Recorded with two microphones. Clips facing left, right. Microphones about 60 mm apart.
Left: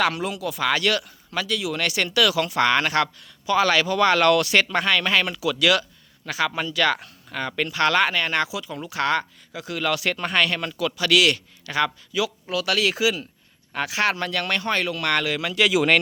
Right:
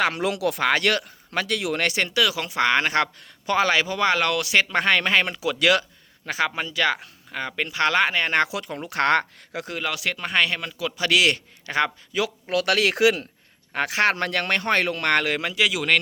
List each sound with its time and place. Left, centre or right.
0.2 s speech: right
0.6 s speech: right
3.7 s speech: right
4.7 s speech: right
8.4 s speech: right
9.8 s speech: centre
10.3 s speech: centre
10.9 s speech: right
13.7 s speech: right
15.7 s speech: centre